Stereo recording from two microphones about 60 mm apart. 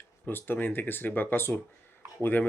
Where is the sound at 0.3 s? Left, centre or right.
Left.